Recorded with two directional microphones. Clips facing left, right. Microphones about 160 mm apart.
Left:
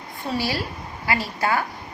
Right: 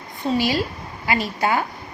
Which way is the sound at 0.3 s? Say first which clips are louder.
Right 5 dB; 20° right (ahead or behind).